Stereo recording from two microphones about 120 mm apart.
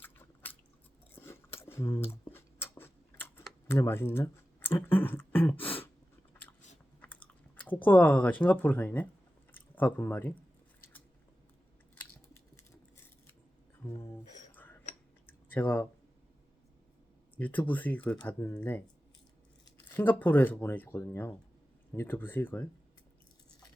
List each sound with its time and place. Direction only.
0.0 s chewing: 15° left (ahead or behind)
1.1 s a sound: 20° left (ahead or behind)
3.7 s speech: 20° left (ahead or behind)
7.0 s speech: 15° left (ahead or behind)
13.8 s a sound: 20° left (ahead or behind)
17.3 s speech: 15° left (ahead or behind)
19.9 s speech: 15° left (ahead or behind)